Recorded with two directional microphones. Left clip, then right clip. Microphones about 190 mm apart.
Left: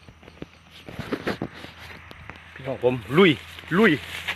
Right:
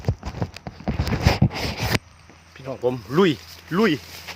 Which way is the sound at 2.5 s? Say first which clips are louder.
Left 1 dB; centre (ahead or behind).